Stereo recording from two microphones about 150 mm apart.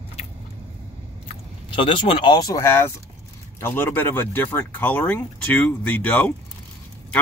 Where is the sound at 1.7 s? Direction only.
35° left (ahead or behind).